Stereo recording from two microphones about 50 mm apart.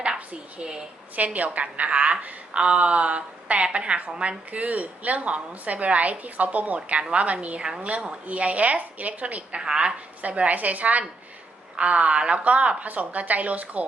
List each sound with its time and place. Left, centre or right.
0.6 s a woman's voice: centre
1.1 s a woman's voice: right
10.2 s a woman's voice: right